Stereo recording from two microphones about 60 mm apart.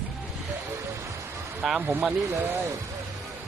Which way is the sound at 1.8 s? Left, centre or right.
Right.